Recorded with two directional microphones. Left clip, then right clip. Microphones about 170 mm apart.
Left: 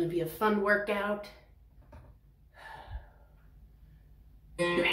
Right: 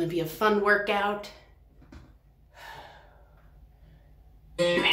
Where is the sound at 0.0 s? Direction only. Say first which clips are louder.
Right 4 dB; 20° right (ahead or behind).